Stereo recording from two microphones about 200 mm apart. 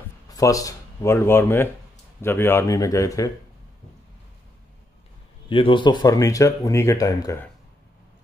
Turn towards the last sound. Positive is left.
turn(degrees=15)  # may be behind; listen again after turning